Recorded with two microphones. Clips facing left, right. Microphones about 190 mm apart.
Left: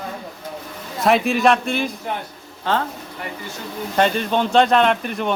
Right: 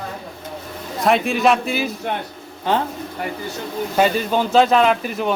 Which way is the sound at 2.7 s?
15° right (ahead or behind).